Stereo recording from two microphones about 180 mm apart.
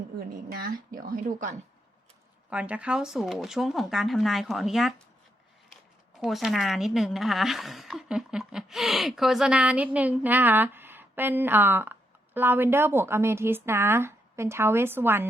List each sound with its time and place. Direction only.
0.6 s speech: 50° right (ahead or behind)
2.5 s speech: 5° right (ahead or behind)
6.1 s a woman's voice: centre (ahead or behind)